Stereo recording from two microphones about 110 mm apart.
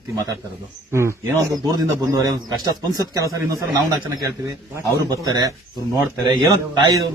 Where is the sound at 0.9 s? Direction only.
25° right (ahead or behind).